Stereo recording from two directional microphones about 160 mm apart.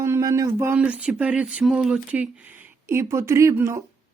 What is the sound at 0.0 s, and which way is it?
Speech, 20° right (ahead or behind).